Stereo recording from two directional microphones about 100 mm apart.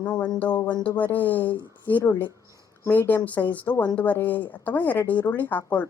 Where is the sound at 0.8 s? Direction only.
15° left (ahead or behind).